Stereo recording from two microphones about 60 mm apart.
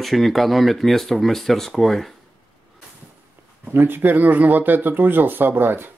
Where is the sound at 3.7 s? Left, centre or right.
Right.